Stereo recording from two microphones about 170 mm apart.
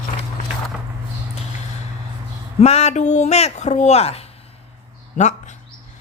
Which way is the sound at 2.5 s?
40° left (ahead or behind).